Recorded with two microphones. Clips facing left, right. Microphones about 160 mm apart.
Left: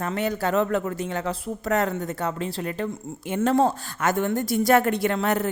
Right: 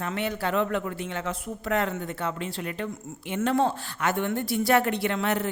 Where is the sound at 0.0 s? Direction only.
40° left (ahead or behind).